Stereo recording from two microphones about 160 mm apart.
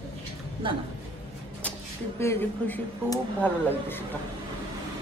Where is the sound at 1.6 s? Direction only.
10° left (ahead or behind).